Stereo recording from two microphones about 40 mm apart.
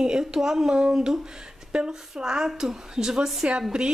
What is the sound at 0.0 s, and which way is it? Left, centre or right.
A woman's voice, centre.